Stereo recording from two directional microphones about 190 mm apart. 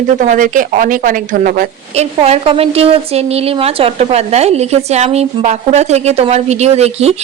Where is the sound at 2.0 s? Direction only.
35° right (ahead or behind).